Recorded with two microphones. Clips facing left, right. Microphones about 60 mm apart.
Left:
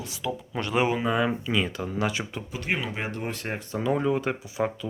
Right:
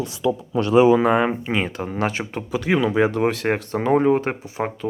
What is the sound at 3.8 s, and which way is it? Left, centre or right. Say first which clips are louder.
Speech: right 7 dB; right.